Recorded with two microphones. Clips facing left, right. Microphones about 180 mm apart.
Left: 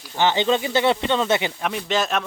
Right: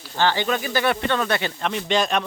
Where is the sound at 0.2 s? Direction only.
20° left (ahead or behind).